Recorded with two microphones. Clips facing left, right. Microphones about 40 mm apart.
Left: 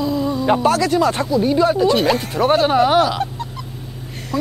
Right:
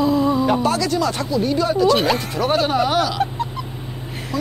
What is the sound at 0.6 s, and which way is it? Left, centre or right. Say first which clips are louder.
Speech: left 4 dB; left.